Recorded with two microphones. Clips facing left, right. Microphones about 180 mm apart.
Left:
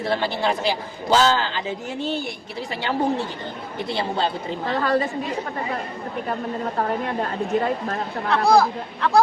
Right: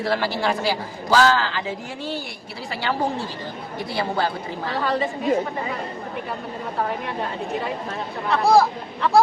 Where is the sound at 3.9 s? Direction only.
25° left (ahead or behind).